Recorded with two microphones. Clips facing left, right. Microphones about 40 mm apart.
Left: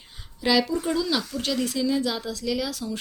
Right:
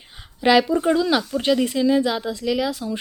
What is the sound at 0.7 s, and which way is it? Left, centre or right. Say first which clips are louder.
A woman's voice: right 6 dB; right.